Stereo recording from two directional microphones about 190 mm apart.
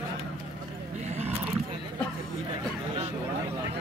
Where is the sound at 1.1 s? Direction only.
35° right (ahead or behind).